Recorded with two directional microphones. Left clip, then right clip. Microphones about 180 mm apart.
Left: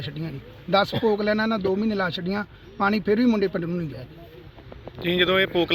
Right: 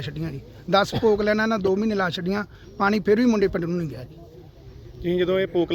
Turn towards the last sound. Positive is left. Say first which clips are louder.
# left 2 dB
turn(degrees=-5)  # may be behind; listen again after turning